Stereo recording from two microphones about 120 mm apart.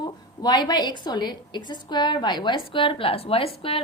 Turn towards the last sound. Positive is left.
turn(degrees=50)  # may be behind; listen again after turning